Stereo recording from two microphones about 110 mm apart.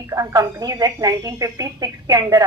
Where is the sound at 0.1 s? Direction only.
35° right (ahead or behind).